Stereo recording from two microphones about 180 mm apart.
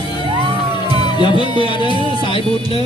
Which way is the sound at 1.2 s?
25° left (ahead or behind).